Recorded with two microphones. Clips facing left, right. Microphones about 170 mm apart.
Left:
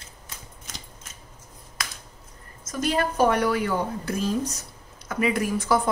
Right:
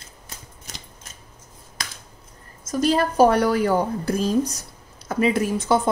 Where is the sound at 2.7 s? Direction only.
35° right (ahead or behind).